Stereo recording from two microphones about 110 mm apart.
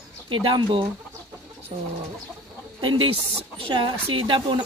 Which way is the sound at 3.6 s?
50° right (ahead or behind).